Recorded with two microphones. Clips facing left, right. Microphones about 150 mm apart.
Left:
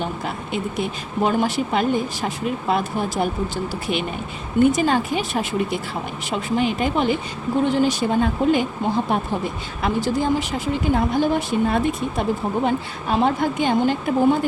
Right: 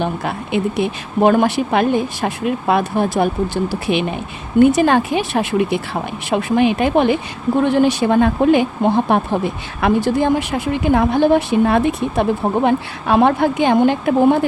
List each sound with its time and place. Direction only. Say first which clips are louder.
0.0 s speech: right 5 dB; 70° right (ahead or behind)